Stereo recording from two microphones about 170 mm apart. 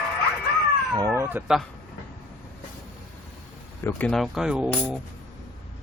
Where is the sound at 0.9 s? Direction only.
20° right (ahead or behind).